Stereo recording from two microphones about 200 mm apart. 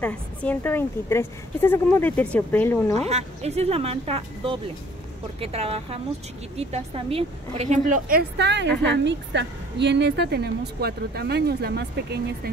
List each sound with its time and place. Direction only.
0.0 s a woman's voice: 5° left (ahead or behind)
3.1 s a woman's voice: 30° right (ahead or behind); by 12.2 s 55° right (ahead or behind)